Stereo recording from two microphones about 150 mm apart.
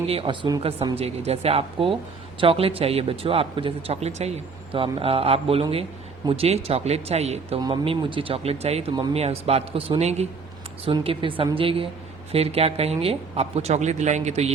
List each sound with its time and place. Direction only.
0.1 s a man's voice: 40° right (ahead or behind)
7.6 s a man's voice: 35° right (ahead or behind)